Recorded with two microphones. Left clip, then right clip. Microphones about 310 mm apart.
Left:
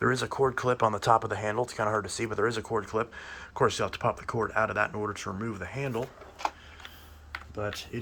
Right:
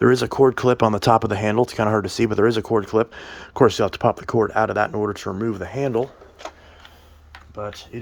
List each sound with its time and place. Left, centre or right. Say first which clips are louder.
0.0 s speech: right 10 dB; right